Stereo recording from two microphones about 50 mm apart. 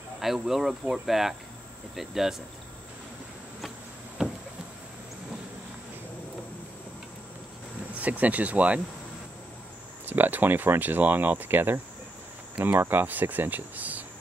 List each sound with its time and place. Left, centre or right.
0.2 s speech: centre
4.2 s a sound: centre
7.9 s speech: right
10.0 s speech: right